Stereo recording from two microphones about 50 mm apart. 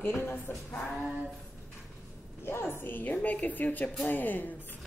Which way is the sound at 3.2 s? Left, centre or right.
Left.